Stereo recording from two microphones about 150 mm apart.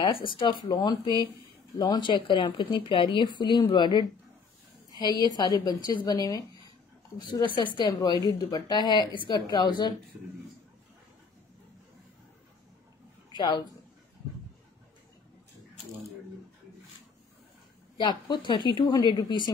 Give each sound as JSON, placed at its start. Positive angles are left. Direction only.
{"t": 0.0, "sound": "a woman's voice", "side_deg": 35}
{"t": 13.3, "sound": "speech", "side_deg": 30}
{"t": 17.9, "sound": "speech", "side_deg": 30}